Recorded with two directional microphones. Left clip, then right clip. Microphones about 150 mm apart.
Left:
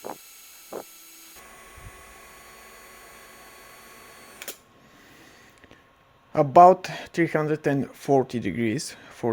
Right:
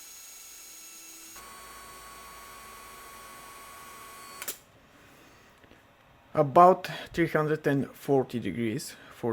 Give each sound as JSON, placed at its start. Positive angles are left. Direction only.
{"t": 6.3, "sound": "speech", "side_deg": 30}